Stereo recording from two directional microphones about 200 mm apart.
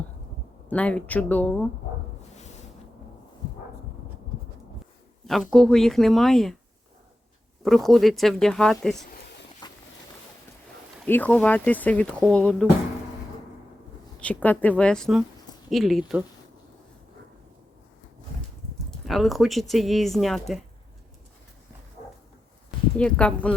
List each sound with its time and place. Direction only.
0.7 s speech: 5° left (ahead or behind)
5.2 s speech: centre (ahead or behind)
7.6 s speech: centre (ahead or behind)
9.6 s a sound: 20° left (ahead or behind)
11.0 s speech: 10° left (ahead or behind)
14.2 s speech: 5° left (ahead or behind)
18.9 s speech: centre (ahead or behind)
23.0 s speech: 5° left (ahead or behind)